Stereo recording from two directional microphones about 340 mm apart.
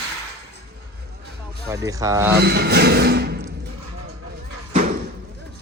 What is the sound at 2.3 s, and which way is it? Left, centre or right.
Speech, right.